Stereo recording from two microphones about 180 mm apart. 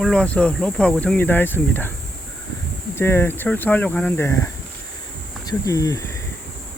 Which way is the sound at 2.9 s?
10° left (ahead or behind).